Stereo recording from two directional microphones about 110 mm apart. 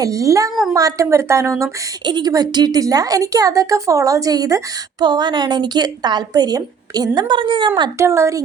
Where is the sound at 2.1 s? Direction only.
40° right (ahead or behind).